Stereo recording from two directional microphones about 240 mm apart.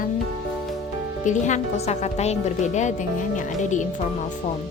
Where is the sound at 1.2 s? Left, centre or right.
Left.